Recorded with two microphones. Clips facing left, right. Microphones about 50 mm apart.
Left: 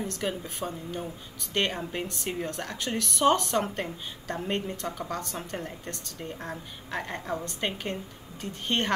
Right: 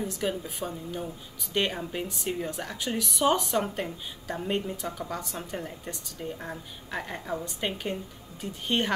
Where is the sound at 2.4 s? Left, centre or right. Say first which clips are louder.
Even; centre.